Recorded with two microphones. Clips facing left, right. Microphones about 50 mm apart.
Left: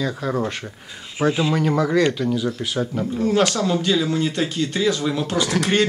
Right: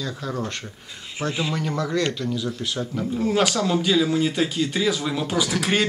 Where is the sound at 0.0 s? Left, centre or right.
Centre.